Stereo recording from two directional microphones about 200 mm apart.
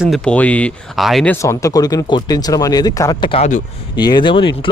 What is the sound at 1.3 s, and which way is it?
A man's voice, 15° left (ahead or behind).